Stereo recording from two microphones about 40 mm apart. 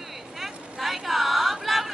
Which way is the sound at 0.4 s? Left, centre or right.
Centre.